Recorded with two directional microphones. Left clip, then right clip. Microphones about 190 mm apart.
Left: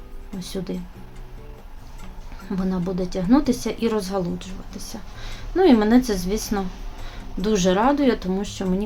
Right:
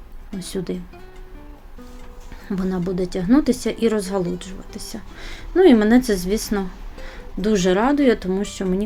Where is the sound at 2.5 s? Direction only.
20° right (ahead or behind).